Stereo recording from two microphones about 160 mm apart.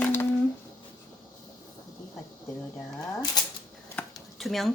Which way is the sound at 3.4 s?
25° left (ahead or behind).